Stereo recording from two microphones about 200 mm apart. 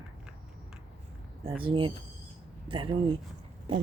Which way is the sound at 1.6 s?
25° right (ahead or behind).